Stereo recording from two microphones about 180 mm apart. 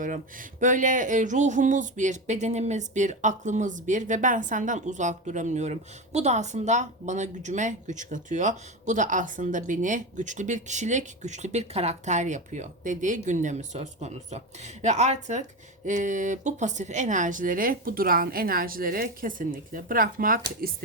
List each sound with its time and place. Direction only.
0.0 s a woman's voice: 45° right (ahead or behind)